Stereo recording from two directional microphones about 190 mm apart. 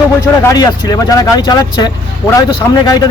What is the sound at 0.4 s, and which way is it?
A man's voice, 20° left (ahead or behind).